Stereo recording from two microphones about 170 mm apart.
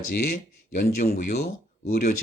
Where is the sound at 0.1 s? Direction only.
60° left (ahead or behind).